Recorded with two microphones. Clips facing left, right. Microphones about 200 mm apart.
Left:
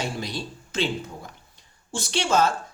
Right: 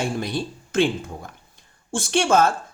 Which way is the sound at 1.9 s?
50° right (ahead or behind).